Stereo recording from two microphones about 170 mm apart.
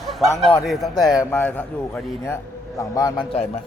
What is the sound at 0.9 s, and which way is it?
A man's voice, 20° left (ahead or behind).